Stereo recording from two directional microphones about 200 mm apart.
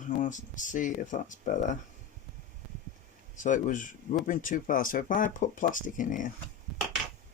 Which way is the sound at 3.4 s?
40° left (ahead or behind).